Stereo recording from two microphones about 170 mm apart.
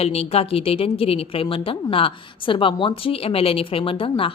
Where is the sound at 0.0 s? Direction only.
35° left (ahead or behind).